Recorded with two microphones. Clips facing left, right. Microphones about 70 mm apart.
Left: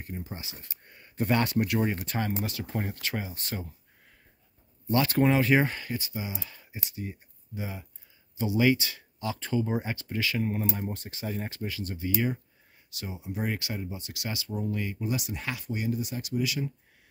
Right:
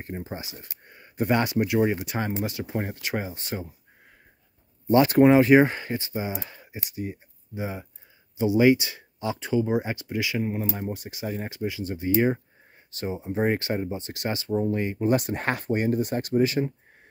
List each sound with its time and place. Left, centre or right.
0.0 s speech: right
4.8 s speech: right
15.0 s speech: right